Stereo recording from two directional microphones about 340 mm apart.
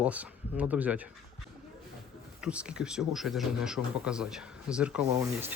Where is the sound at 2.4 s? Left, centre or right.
Centre.